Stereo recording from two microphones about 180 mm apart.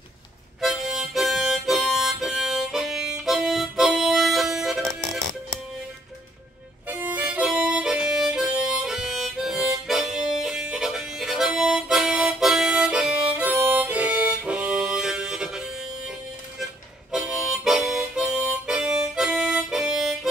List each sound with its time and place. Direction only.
0.6 s harmonica: centre (ahead or behind)
6.9 s harmonica: 10° right (ahead or behind)
17.1 s harmonica: centre (ahead or behind)